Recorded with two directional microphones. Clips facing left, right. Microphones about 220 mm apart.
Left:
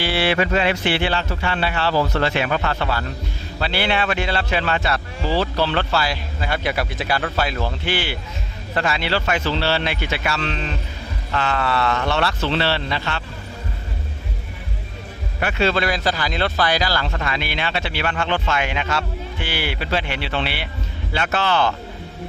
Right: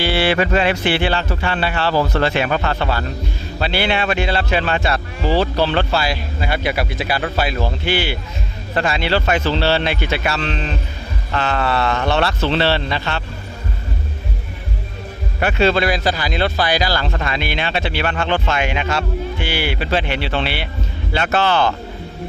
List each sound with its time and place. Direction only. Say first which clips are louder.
0.0 s music: right 3 dB; 30° right (ahead or behind)
0.3 s speech: right 2 dB; 50° right (ahead or behind)
1.9 s speech: right 3 dB; 40° right (ahead or behind); by 6.1 s 20° right (ahead or behind)
6.4 s a man's voice: right 2 dB; 10° right (ahead or behind)
8.7 s speech: right 3 dB; 25° right (ahead or behind)
15.4 s a man's voice: right 4 dB; 25° right (ahead or behind)
17.0 s speech: right 3 dB; 30° right (ahead or behind)